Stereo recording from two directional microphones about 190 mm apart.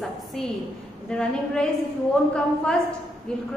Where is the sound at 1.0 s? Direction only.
5° left (ahead or behind).